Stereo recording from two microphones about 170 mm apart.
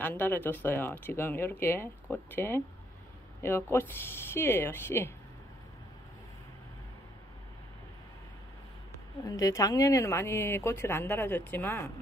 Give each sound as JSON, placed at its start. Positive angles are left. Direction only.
{"t": 0.0, "sound": "speech", "side_deg": 10}
{"t": 9.2, "sound": "speech", "side_deg": 20}